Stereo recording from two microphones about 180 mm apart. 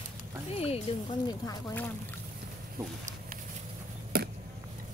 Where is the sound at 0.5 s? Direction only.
35° left (ahead or behind).